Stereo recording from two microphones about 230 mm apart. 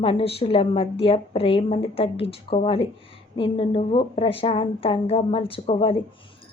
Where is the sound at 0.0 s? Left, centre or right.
Left.